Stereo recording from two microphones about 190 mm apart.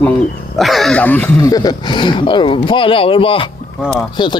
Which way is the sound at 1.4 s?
20° left (ahead or behind).